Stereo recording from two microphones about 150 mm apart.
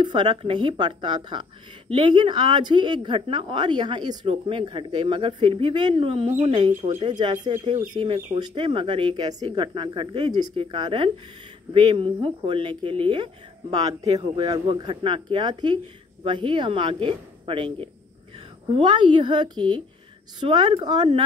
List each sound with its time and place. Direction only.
0.0 s speech: 30° right (ahead or behind)